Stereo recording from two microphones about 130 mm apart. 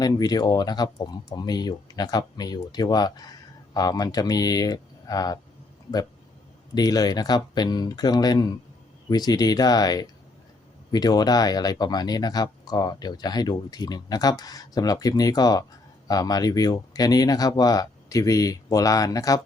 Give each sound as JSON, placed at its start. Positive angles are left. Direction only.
{"t": 0.0, "sound": "speech", "side_deg": 30}
{"t": 6.7, "sound": "speech", "side_deg": 30}